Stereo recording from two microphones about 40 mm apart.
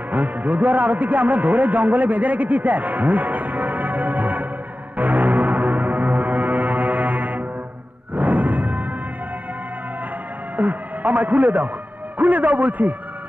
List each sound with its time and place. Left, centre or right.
0.1 s a man's voice: right
4.9 s music: right
10.5 s music: right
12.2 s a man's voice: right